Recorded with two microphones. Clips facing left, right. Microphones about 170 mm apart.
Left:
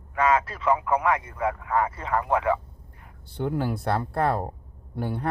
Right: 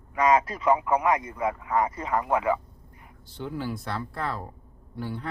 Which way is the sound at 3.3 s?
55° left (ahead or behind).